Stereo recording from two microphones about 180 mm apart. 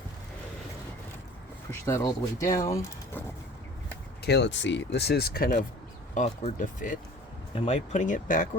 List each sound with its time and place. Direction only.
1.7 s speech: 15° left (ahead or behind)
4.2 s speech: 70° left (ahead or behind); by 7.0 s 45° left (ahead or behind)
7.5 s speech: 35° left (ahead or behind)